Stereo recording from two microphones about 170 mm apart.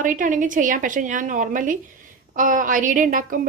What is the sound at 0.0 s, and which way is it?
A woman's voice, 50° right (ahead or behind).